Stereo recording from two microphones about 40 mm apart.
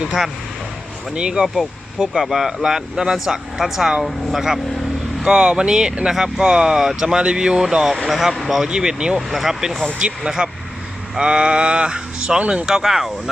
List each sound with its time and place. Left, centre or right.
1.1 s speech: right
2.2 s speech: centre
5.2 s speech: right
8.0 s speech: centre
8.6 s speech: centre
9.1 s speech: centre
10.0 s speech: right
12.4 s speech: right
12.6 s speech: centre